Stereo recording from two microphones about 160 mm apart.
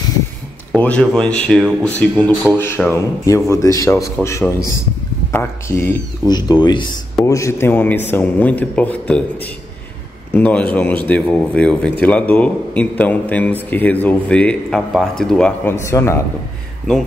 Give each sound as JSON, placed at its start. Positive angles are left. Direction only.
{"t": 0.7, "sound": "a man's voice", "side_deg": 5}
{"t": 7.2, "sound": "a man's voice", "side_deg": 20}
{"t": 10.3, "sound": "a man's voice", "side_deg": 10}
{"t": 15.7, "sound": "a man's voice", "side_deg": 15}